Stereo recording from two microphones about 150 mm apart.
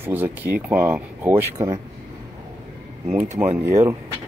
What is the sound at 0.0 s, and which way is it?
Speech, 15° right (ahead or behind).